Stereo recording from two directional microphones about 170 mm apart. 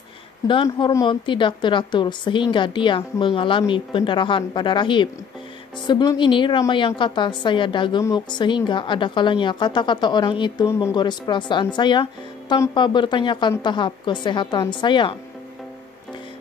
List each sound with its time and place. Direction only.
0.7 s speech: 20° left (ahead or behind)